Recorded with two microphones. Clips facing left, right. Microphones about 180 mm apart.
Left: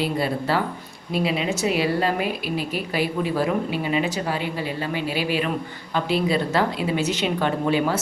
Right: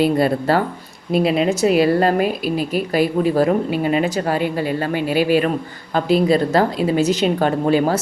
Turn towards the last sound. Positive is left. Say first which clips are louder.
# right 5 dB
turn(degrees=-40)  # may be behind; listen again after turning